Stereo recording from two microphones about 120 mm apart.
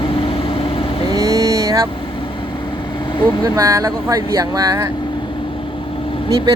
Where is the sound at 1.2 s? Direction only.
30° right (ahead or behind).